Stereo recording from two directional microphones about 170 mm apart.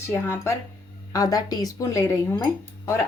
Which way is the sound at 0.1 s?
15° left (ahead or behind).